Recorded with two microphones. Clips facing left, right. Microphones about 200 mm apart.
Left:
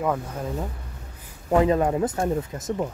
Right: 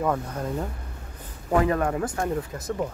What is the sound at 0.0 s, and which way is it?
Speech, 5° left (ahead or behind).